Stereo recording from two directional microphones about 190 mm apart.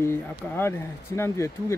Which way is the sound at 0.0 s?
15° left (ahead or behind).